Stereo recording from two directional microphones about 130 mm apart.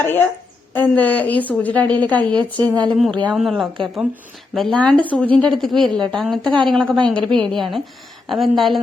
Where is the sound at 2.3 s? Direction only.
35° right (ahead or behind).